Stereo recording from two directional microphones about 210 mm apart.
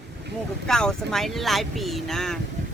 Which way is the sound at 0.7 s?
5° left (ahead or behind).